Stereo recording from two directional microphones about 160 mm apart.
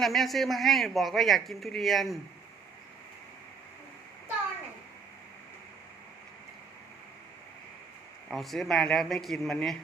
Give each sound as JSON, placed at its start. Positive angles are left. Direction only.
{"t": 0.0, "sound": "speech", "side_deg": 0}
{"t": 8.3, "sound": "speech", "side_deg": 0}